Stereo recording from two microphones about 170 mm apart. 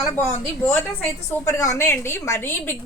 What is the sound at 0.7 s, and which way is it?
A woman's voice, 10° left (ahead or behind).